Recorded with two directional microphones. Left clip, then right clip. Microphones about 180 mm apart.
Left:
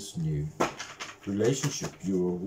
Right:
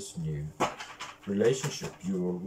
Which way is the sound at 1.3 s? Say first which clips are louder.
Right 1 dB; 20° left (ahead or behind).